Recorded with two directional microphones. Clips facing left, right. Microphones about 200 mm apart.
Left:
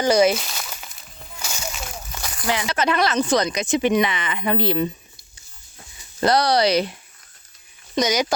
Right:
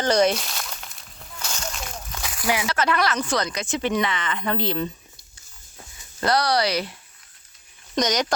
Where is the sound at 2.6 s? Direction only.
20° left (ahead or behind).